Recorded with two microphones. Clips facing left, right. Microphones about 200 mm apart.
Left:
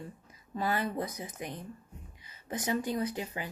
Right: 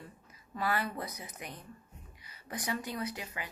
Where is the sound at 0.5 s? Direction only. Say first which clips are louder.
Left 2 dB; 25° left (ahead or behind).